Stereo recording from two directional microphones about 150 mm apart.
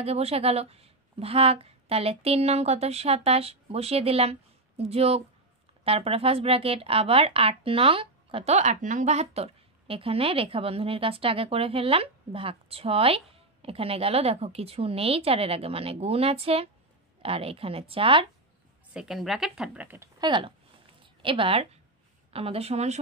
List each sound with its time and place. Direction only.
0.0 s a woman's voice: 40° right (ahead or behind)
8.5 s a woman's voice: 55° right (ahead or behind); by 18.2 s 35° right (ahead or behind)
18.9 s speech: centre (ahead or behind)
20.2 s a woman's voice: 30° right (ahead or behind)